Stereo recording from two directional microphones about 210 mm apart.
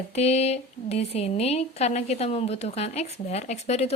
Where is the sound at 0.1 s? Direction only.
30° left (ahead or behind).